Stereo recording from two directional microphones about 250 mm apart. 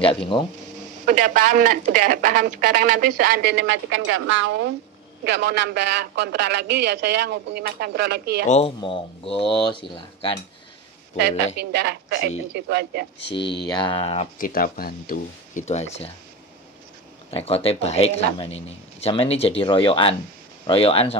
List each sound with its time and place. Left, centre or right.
0.0 s speech: left
1.0 s speech: right
8.5 s speech: left
11.1 s speech: right
13.7 s speech: centre
17.3 s speech: left